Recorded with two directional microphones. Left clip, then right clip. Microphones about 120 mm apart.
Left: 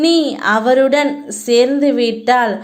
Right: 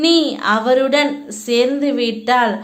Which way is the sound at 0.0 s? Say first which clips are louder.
Left 1 dB; 30° left (ahead or behind).